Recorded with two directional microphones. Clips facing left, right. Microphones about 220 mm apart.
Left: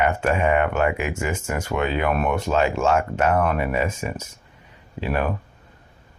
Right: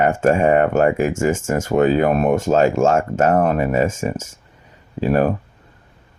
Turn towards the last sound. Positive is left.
turn(degrees=-40)  # may be behind; listen again after turning